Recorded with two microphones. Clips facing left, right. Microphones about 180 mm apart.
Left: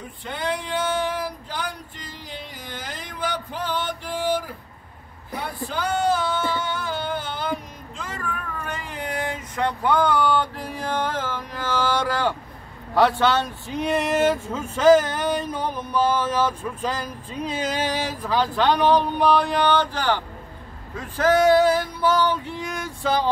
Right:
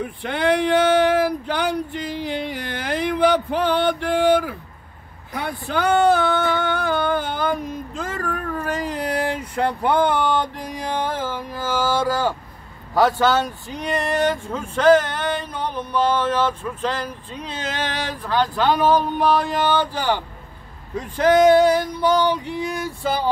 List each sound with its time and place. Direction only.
0.0 s male singing: 70° right (ahead or behind)
5.4 s a sound: 65° right (ahead or behind); by 12.4 s 5° right (ahead or behind)
12.9 s speech: centre (ahead or behind)
20.9 s male singing: 20° right (ahead or behind)